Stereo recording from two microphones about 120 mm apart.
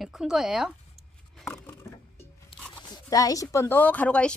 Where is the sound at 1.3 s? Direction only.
5° left (ahead or behind).